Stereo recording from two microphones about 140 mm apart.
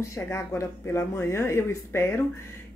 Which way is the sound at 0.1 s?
20° left (ahead or behind).